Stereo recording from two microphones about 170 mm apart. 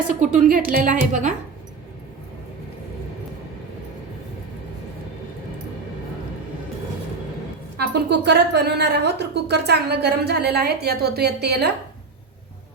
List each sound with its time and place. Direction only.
0.1 s a woman's voice: 45° right (ahead or behind)
7.8 s a woman's voice: 75° right (ahead or behind)